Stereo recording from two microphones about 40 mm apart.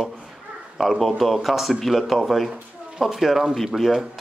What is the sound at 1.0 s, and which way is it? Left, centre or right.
Speech, centre.